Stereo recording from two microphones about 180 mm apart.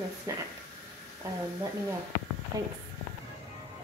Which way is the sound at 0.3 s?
20° right (ahead or behind).